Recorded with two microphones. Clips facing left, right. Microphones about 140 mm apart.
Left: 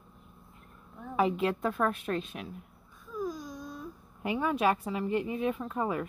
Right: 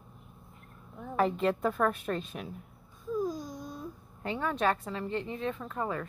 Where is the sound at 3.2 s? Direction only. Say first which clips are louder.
Left 2 dB; 30° right (ahead or behind).